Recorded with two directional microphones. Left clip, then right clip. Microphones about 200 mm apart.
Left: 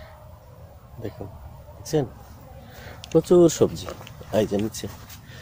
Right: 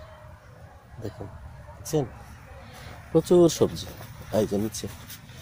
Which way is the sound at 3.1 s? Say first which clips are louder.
Left 3 dB; 5° left (ahead or behind).